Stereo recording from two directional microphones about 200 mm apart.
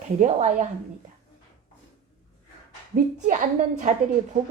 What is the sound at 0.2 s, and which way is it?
Speech, 35° right (ahead or behind).